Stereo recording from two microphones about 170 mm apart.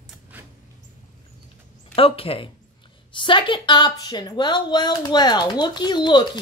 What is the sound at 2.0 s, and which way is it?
A woman's voice, 35° left (ahead or behind).